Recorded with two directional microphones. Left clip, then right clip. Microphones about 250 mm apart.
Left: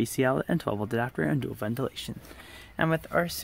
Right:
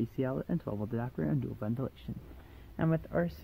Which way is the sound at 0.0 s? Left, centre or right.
Left.